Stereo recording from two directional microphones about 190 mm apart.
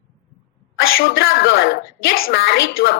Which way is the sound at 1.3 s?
75° left (ahead or behind).